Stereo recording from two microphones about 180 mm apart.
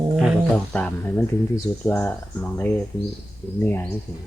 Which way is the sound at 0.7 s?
10° left (ahead or behind).